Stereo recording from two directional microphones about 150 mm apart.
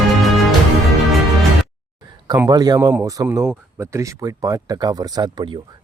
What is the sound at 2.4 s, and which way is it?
Speech, 25° right (ahead or behind).